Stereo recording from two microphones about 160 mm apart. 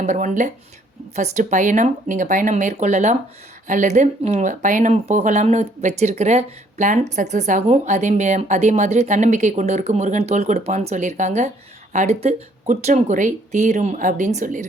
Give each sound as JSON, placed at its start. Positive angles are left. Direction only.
{"t": 0.0, "sound": "speech", "side_deg": -50}